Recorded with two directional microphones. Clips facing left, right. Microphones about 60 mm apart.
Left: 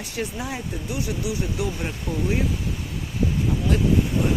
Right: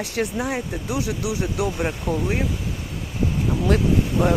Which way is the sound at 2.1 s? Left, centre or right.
Right.